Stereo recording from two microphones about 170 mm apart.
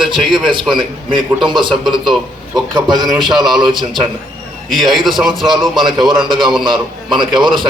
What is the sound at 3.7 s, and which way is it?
Speech, 30° right (ahead or behind).